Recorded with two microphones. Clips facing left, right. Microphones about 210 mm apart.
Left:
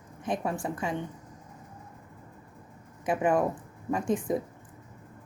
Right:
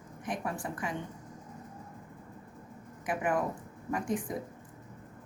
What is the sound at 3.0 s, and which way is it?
A woman's voice, 25° left (ahead or behind).